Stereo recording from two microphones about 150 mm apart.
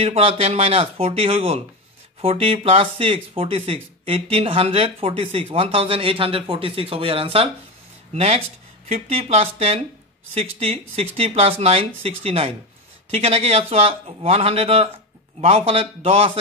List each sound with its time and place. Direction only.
0.0 s speech: 40° right (ahead or behind)